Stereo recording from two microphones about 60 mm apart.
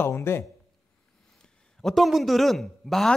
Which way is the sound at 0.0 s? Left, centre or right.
Left.